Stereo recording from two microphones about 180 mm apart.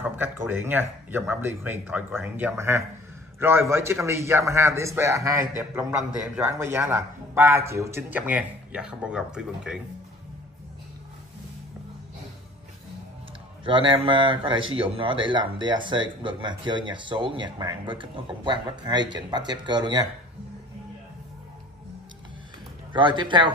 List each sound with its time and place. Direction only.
0.0 s a man's voice: 10° right (ahead or behind)
13.7 s speech: 25° right (ahead or behind)
22.9 s speech: 25° right (ahead or behind)